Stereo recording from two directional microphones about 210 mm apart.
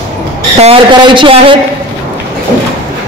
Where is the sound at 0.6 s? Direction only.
25° right (ahead or behind).